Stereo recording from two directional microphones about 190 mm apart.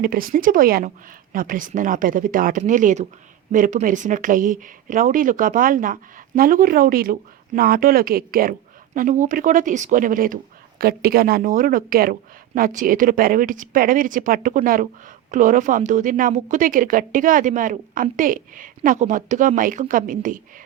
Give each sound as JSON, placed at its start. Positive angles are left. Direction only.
{"t": 0.0, "sound": "speech", "side_deg": -50}